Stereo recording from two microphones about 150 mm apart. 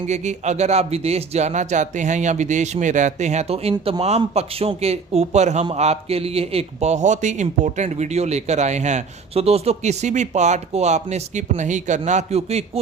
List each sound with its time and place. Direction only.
0.1 s a man's voice: 50° right (ahead or behind)